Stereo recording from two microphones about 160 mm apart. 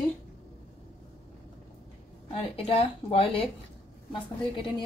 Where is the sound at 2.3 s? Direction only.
35° left (ahead or behind).